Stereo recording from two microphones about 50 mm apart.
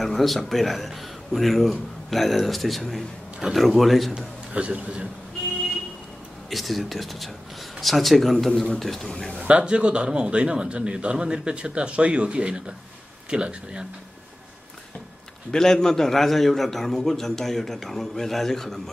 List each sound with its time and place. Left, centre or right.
0.0 s speech: centre
4.6 s a man's voice: right
6.5 s speech: centre
8.5 s speech: centre
9.5 s a man's voice: right
15.5 s a man's voice: centre